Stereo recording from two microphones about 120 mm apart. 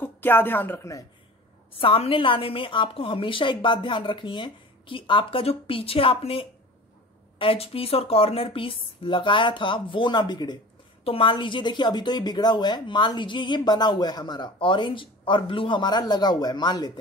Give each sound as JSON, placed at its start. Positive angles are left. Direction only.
{"t": 0.0, "sound": "speech", "side_deg": 15}
{"t": 1.7, "sound": "a woman's voice", "side_deg": 50}